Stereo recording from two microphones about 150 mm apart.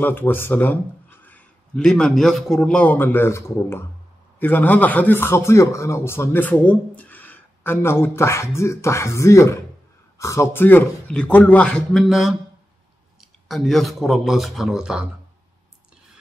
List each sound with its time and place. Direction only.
0.0 s a man's voice: 15° left (ahead or behind); by 15.0 s 5° right (ahead or behind)